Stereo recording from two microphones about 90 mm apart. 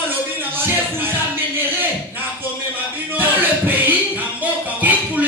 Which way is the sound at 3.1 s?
20° right (ahead or behind).